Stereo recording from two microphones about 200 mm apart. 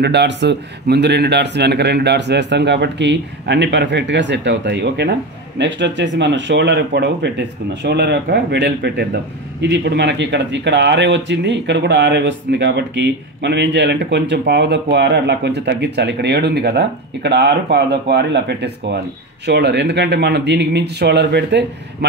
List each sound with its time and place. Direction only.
0.0 s speech: 60° right (ahead or behind)